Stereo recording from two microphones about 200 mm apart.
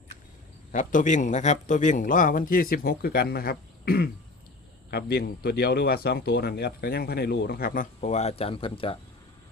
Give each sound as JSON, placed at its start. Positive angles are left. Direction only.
{"t": 0.7, "sound": "a man's voice", "side_deg": 40}